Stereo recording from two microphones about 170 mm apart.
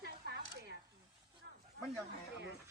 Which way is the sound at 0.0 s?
75° right (ahead or behind).